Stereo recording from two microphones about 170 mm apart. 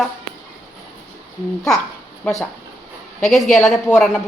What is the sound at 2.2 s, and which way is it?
Speech, 5° left (ahead or behind).